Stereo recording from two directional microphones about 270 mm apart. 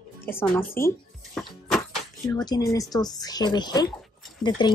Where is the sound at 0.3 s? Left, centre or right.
Centre.